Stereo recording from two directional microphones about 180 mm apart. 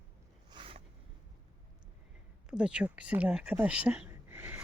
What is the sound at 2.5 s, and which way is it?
Speech, 5° right (ahead or behind).